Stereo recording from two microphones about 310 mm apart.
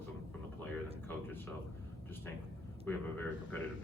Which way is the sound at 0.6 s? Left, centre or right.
Centre.